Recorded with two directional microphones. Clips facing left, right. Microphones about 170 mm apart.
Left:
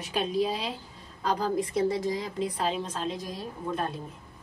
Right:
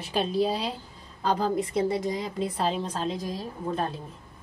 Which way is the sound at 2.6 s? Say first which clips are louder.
Right 2 dB; 35° right (ahead or behind).